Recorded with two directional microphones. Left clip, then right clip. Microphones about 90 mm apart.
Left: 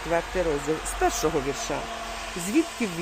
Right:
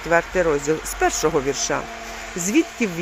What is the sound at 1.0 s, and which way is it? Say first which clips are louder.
Speech: right 4 dB; centre (ahead or behind).